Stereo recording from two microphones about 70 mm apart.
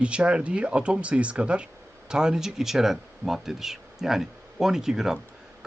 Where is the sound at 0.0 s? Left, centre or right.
Centre.